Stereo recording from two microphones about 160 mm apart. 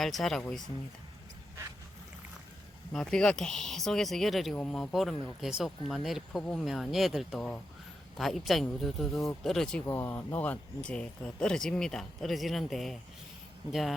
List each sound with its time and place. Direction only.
0.0 s speech: centre (ahead or behind)
2.9 s speech: 5° left (ahead or behind)
9.8 s speech: 15° left (ahead or behind); by 13.9 s centre (ahead or behind)